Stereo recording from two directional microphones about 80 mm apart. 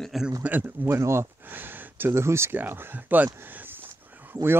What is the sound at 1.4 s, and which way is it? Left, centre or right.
Speech, right.